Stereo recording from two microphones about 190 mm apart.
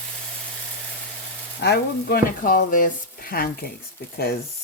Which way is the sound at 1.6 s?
55° left (ahead or behind).